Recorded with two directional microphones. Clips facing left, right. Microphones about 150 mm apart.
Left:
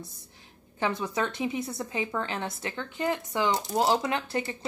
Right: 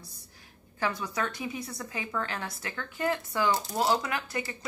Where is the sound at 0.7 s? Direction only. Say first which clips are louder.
Left 3 dB; 25° left (ahead or behind).